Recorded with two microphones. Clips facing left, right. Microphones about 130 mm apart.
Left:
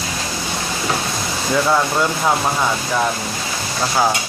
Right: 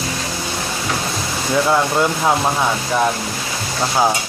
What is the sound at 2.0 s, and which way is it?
Speech, 15° right (ahead or behind).